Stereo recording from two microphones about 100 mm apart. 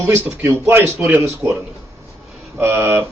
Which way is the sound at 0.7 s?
20° right (ahead or behind).